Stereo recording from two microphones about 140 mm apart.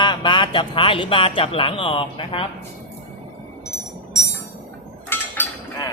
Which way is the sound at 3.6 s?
20° left (ahead or behind).